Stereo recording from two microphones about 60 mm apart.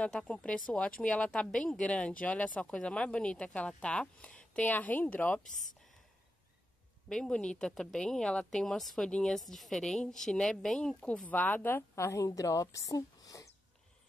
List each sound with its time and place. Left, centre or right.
0.1 s speech: centre
4.6 s speech: left
7.1 s speech: centre
11.0 s speech: left
11.9 s speech: left